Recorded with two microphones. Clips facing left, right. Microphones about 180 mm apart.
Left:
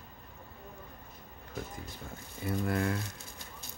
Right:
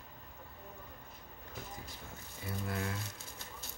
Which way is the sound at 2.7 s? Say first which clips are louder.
Left 7 dB; 60° left (ahead or behind).